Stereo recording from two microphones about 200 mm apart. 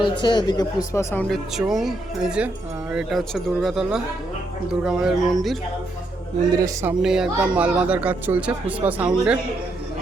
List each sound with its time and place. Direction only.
0.0 s speech: 25° left (ahead or behind); by 5.5 s centre (ahead or behind)
6.8 s speech: 5° right (ahead or behind)